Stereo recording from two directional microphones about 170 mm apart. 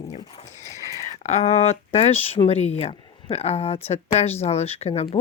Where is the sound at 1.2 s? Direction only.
40° left (ahead or behind).